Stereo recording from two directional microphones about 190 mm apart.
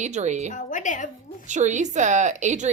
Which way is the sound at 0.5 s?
40° left (ahead or behind).